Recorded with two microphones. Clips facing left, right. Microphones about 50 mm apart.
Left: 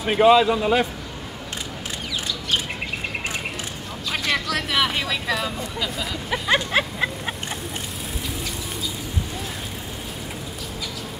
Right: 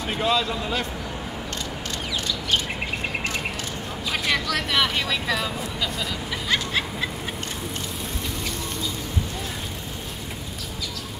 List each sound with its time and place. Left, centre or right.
0.0 s a man's voice: centre
4.1 s speech: centre
6.3 s vehicle: left